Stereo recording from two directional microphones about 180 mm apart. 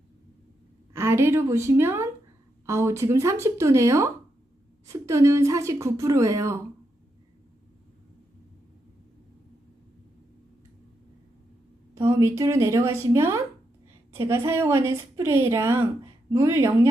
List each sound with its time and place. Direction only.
0.9 s a woman's voice: 15° right (ahead or behind)
11.9 s a woman's voice: 15° right (ahead or behind)